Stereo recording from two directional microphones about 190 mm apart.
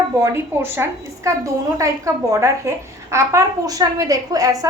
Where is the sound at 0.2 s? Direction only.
10° right (ahead or behind).